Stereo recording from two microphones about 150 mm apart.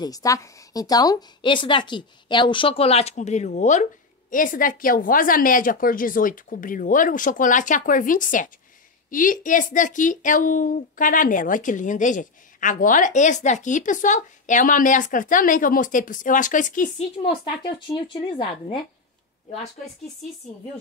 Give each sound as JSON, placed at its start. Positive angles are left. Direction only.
{"t": 0.0, "sound": "a woman's voice", "side_deg": 25}
{"t": 4.3, "sound": "speech", "side_deg": 65}
{"t": 17.2, "sound": "a woman's voice", "side_deg": 35}